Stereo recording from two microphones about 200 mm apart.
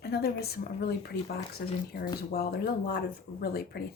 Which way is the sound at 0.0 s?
50° left (ahead or behind).